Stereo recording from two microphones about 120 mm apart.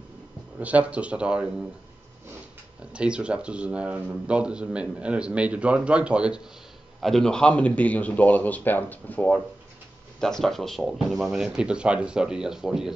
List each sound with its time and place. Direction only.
0.6 s speech: 10° right (ahead or behind)
2.8 s speech: 10° right (ahead or behind)
7.0 s a man's voice: centre (ahead or behind)